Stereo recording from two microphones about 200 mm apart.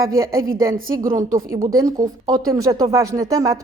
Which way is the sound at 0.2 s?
15° right (ahead or behind).